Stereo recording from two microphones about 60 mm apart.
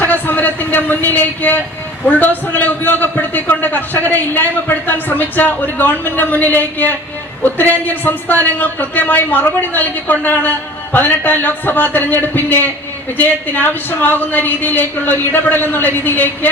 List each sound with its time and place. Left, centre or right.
0.0 s a man's voice: left